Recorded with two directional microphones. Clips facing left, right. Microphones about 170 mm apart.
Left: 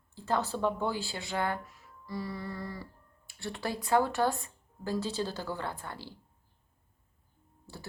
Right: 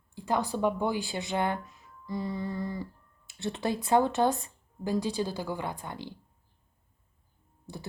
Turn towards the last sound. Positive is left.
turn(degrees=-15)  # may be behind; listen again after turning